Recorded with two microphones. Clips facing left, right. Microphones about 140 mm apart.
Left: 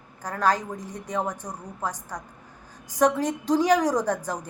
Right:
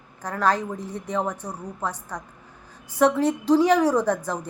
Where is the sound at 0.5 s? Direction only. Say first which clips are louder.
Right 4 dB; 10° left (ahead or behind).